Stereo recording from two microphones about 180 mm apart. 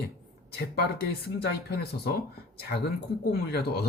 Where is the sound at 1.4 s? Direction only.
60° left (ahead or behind).